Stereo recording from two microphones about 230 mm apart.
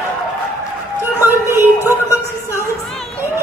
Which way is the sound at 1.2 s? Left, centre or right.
Centre.